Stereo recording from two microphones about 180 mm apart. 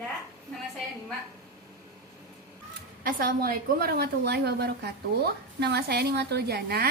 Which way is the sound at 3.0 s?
55° right (ahead or behind).